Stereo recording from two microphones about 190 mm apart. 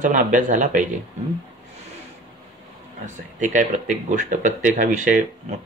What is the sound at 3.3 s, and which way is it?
Speech, 40° right (ahead or behind).